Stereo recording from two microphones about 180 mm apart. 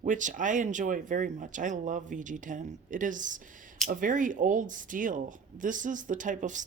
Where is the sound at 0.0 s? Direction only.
45° right (ahead or behind).